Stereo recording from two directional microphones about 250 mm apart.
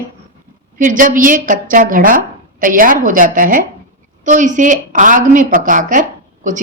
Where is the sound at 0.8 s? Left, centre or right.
Right.